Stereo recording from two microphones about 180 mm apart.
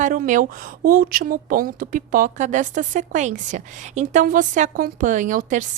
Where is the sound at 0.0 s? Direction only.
45° right (ahead or behind).